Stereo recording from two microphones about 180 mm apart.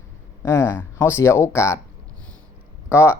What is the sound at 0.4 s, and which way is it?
Speech, 15° left (ahead or behind).